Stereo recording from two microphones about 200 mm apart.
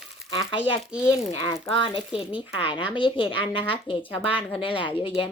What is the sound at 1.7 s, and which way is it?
A woman's voice, 25° left (ahead or behind).